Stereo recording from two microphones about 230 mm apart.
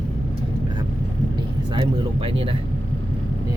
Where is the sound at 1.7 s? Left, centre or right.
Right.